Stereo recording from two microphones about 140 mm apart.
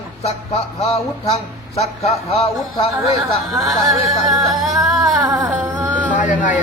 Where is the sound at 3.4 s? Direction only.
Centre (ahead or behind).